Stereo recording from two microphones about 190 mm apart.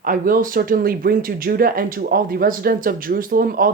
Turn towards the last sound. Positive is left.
turn(degrees=-50)  # may be behind; listen again after turning